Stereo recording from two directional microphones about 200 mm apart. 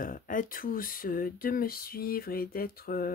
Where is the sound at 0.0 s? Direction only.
45° left (ahead or behind).